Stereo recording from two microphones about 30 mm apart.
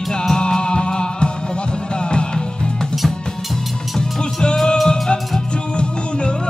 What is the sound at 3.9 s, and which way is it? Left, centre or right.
Music, left.